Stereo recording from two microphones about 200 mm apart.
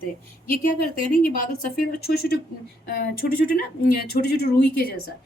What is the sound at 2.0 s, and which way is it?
A woman's voice, 50° left (ahead or behind).